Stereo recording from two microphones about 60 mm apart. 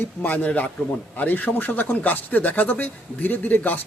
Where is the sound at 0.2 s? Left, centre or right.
Left.